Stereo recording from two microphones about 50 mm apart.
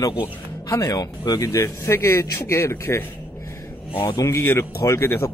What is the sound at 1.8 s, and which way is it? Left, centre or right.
Speech, left.